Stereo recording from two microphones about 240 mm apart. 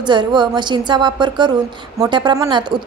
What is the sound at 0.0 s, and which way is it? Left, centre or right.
A woman's voice, centre.